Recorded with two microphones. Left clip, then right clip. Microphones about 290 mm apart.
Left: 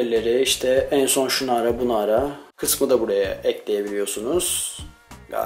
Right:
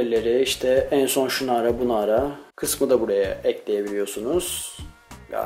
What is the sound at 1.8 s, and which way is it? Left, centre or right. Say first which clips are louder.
Speech: left 1 dB; right.